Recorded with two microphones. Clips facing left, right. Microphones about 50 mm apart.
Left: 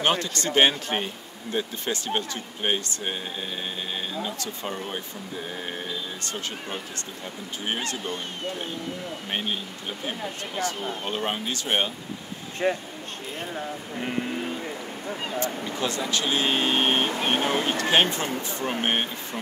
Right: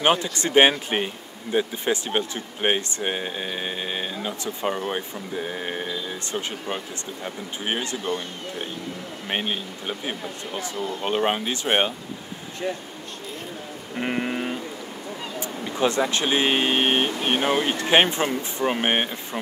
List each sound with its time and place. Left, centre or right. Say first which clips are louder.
0.0 s speech: right 3 dB; centre
9.3 s speech: right 4 dB; right
10.6 s speech: left 1 dB; left
11.1 s speech: right 7 dB; right
12.6 s speech: left 4 dB; left
13.9 s vehicle: right 4 dB; right
15.6 s speech: right 6 dB; right